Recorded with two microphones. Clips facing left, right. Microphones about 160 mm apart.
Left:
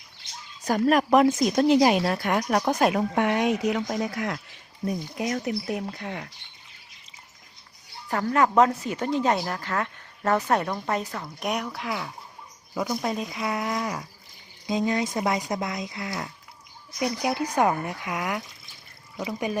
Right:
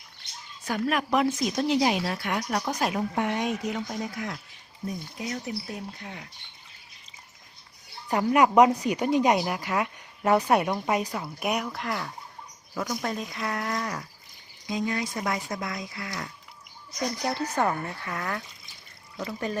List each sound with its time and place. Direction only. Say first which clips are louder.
0.6 s a woman's voice: left 6 dB; 40° left (ahead or behind)
2.9 s speech: left 4 dB; 80° left
8.1 s speech: right 1 dB; 15° right (ahead or behind); by 12.1 s 5° left (ahead or behind)
12.7 s speech: left 3 dB; 15° left (ahead or behind)
14.7 s speech: left 4 dB; 25° left (ahead or behind)
17.0 s speech: left 3 dB; 10° left (ahead or behind)